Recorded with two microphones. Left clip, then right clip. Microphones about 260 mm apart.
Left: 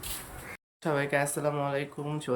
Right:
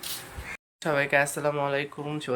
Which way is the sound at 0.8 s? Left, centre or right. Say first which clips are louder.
Right 4 dB; centre.